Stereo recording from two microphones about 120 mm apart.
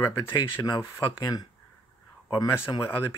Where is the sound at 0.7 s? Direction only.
25° left (ahead or behind).